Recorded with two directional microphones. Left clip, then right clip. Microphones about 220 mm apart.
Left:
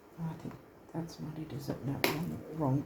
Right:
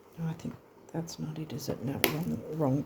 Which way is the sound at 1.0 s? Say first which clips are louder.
Right 3 dB; 45° right (ahead or behind).